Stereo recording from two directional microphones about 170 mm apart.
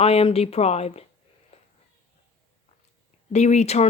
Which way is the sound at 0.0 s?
35° left (ahead or behind).